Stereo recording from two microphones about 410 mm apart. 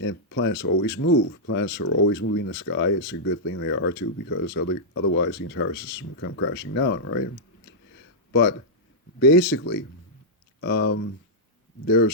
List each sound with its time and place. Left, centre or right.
0.0 s speech: left